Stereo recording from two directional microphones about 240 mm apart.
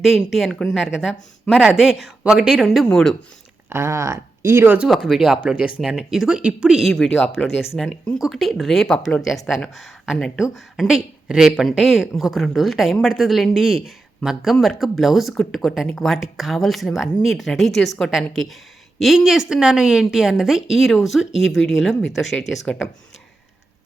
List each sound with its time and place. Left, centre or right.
0.0 s a woman's voice: centre
3.7 s a woman's voice: centre